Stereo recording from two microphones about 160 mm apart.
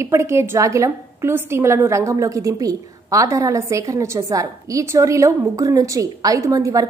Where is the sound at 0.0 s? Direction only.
15° right (ahead or behind).